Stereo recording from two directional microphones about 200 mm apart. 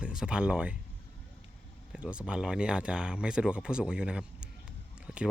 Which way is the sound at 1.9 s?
5° right (ahead or behind).